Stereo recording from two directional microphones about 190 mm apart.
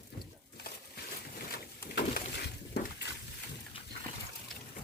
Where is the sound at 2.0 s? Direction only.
60° left (ahead or behind).